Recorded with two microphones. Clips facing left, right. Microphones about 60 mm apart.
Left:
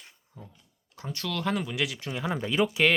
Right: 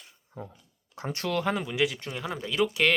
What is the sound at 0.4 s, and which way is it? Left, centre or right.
Speech, right.